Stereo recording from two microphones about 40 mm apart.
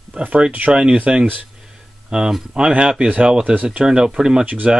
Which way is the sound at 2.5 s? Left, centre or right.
Right.